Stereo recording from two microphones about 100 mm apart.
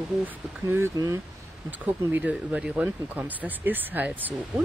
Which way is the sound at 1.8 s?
15° right (ahead or behind).